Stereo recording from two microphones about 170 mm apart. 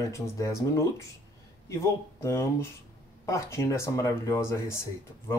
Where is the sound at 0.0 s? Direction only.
15° left (ahead or behind).